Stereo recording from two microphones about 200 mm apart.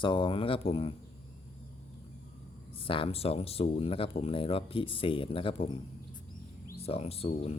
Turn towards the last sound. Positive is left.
turn(degrees=30)  # may be behind; listen again after turning